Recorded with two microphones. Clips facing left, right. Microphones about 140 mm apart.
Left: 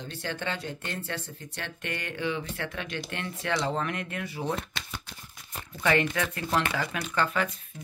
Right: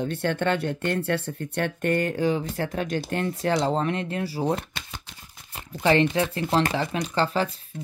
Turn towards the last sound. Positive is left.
turn(degrees=-30)  # may be behind; listen again after turning